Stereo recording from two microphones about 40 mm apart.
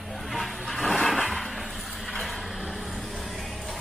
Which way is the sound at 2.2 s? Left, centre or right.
Centre.